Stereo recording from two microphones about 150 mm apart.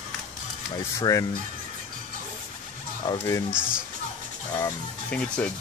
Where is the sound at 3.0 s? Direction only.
25° left (ahead or behind).